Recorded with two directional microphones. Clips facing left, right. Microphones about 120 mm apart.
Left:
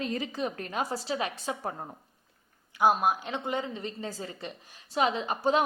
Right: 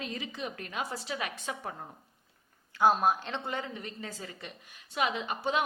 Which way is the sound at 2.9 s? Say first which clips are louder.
Even; 10° left (ahead or behind).